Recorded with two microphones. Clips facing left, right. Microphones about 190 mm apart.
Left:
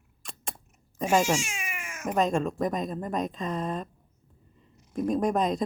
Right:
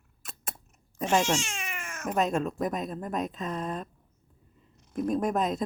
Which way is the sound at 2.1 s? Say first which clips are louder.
Left 2 dB; 5° right (ahead or behind).